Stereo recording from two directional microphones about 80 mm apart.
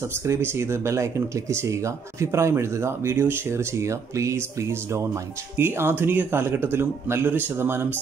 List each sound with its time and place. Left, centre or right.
0.1 s speech: right